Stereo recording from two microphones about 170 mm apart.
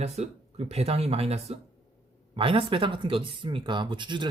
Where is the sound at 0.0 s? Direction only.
40° right (ahead or behind).